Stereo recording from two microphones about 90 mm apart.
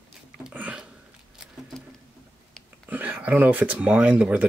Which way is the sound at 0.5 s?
15° right (ahead or behind).